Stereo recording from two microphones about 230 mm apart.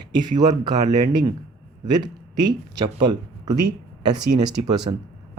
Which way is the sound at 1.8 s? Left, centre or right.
Centre.